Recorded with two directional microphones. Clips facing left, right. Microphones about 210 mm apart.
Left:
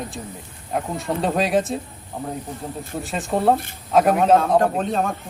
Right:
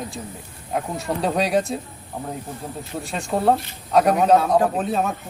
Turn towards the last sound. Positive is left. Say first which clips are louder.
# even
turn(degrees=-5)  # may be behind; listen again after turning